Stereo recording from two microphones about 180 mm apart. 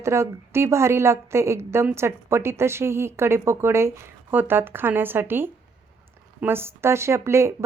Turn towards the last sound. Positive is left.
turn(degrees=-15)  # may be behind; listen again after turning